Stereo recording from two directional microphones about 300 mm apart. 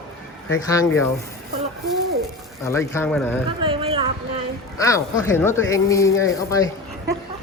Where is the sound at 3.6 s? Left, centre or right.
Centre.